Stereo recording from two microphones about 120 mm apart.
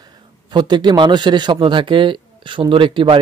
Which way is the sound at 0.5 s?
40° right (ahead or behind).